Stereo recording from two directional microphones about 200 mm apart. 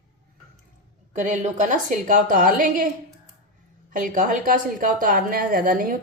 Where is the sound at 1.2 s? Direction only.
40° right (ahead or behind).